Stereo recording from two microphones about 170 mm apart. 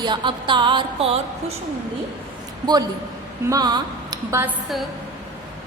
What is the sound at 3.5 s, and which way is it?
A woman's voice, 20° right (ahead or behind).